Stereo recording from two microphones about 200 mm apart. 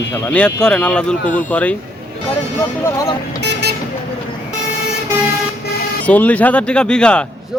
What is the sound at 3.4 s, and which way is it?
Vehicle, 55° right (ahead or behind).